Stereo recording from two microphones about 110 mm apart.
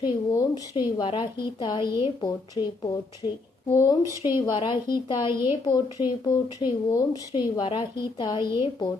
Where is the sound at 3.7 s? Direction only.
30° left (ahead or behind).